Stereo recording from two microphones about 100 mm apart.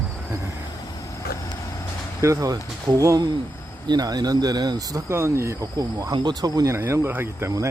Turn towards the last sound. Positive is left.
turn(degrees=-30)  # may be behind; listen again after turning